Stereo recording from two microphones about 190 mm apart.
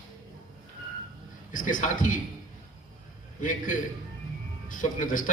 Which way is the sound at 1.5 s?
45° left (ahead or behind).